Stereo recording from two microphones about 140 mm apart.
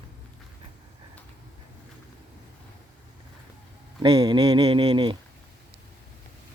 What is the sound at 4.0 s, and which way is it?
Speech, 30° right (ahead or behind).